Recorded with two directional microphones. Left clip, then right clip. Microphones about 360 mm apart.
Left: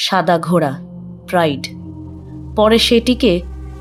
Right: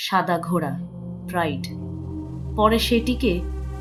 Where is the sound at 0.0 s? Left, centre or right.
Left.